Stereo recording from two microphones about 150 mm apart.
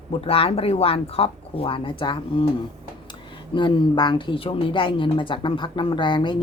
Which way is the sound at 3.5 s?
30° left (ahead or behind).